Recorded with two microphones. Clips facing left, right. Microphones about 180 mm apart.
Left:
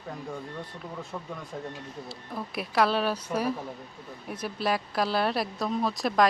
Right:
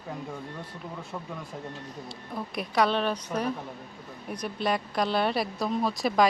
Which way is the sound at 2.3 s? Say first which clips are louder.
Even; centre (ahead or behind).